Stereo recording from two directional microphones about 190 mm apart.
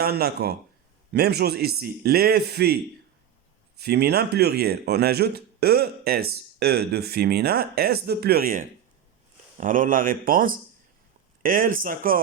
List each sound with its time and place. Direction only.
0.0 s speech: 55° right (ahead or behind)
3.8 s speech: 60° right (ahead or behind)